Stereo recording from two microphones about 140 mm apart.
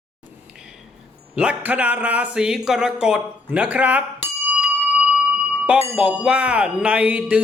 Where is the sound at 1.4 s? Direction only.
10° right (ahead or behind).